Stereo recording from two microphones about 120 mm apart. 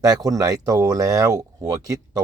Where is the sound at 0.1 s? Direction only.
30° right (ahead or behind).